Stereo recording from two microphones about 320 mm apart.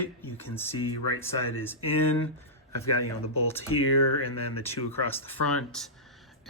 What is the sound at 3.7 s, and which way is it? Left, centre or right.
Speech, left.